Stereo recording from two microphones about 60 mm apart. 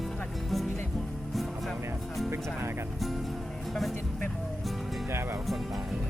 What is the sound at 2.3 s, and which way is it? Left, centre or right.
Speech, right.